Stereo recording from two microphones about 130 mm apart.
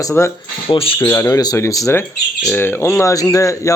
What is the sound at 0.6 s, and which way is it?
Speech, 40° left (ahead or behind).